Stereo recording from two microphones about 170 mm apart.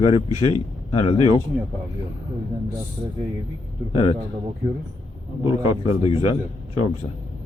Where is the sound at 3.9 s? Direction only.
30° left (ahead or behind).